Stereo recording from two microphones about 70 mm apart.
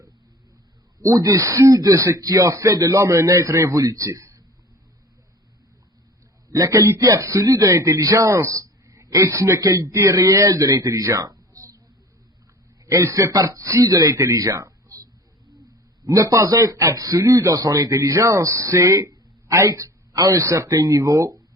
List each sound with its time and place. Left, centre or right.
1.0 s a man's voice: right
3.8 s a man's voice: right
6.5 s a man's voice: right
12.9 s a man's voice: right
16.0 s a man's voice: right
17.9 s a man's voice: right